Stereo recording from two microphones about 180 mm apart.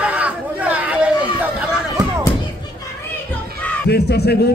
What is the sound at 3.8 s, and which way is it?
Speech, 65° left (ahead or behind).